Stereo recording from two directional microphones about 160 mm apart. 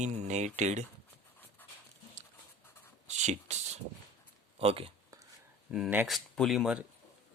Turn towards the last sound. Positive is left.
turn(degrees=0)  # may be behind; listen again after turning